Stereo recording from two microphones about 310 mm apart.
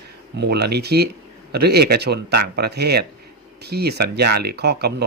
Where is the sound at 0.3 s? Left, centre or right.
Right.